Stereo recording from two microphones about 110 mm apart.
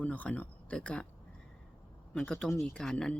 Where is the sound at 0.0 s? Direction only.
15° left (ahead or behind).